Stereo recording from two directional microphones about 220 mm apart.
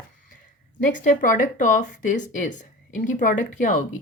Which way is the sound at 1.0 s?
35° left (ahead or behind).